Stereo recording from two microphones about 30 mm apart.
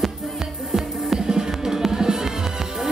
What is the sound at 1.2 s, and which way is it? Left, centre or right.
Music, centre.